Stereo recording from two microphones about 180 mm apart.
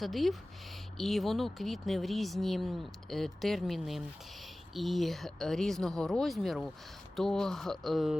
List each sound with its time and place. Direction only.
0.0 s speech: centre (ahead or behind)